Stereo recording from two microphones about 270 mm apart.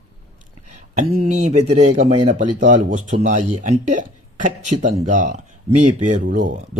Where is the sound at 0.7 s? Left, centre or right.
Right.